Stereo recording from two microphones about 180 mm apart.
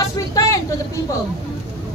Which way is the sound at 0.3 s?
20° left (ahead or behind).